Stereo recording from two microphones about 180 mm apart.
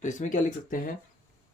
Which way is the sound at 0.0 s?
45° left (ahead or behind).